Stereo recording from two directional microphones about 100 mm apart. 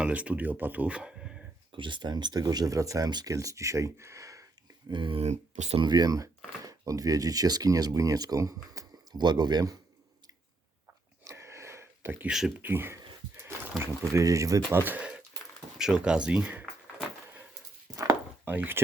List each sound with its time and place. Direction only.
0.0 s speech: 10° right (ahead or behind)
1.7 s speech: 55° right (ahead or behind); by 3.1 s 30° right (ahead or behind)
3.1 s speech: 45° right (ahead or behind)
3.3 s speech: 30° right (ahead or behind)
4.9 s speech: 55° right (ahead or behind); by 5.8 s 80° right
5.8 s speech: 45° right (ahead or behind)
9.2 s speech: 45° right (ahead or behind)
11.2 s a sound: 30° right (ahead or behind)
12.5 s speech: 20° right (ahead or behind)
13.4 s a sound: 25° right (ahead or behind)
14.1 s speech: 30° right (ahead or behind)
14.8 s speech: 15° right (ahead or behind)
17.9 s chopping: 35° right (ahead or behind)
18.4 s speech: 20° right (ahead or behind)